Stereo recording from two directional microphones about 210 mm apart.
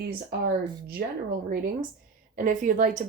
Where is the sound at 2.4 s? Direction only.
40° right (ahead or behind).